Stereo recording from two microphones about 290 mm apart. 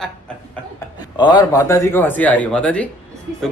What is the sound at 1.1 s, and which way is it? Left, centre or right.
Speech, centre.